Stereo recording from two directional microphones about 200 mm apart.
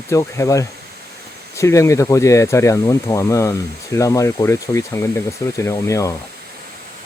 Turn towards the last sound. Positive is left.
turn(degrees=15)  # may be behind; listen again after turning